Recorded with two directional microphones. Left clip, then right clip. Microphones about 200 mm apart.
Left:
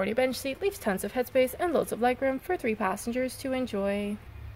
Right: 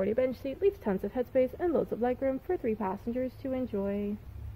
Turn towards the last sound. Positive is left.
turn(degrees=15)  # may be behind; listen again after turning